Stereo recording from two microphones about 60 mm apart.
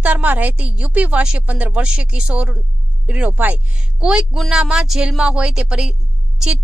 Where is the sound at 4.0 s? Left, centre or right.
Centre.